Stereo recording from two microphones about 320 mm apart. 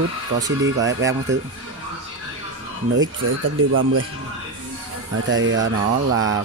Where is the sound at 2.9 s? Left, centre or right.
Right.